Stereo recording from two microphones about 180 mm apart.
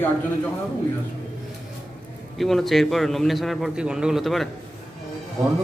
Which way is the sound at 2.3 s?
Centre (ahead or behind).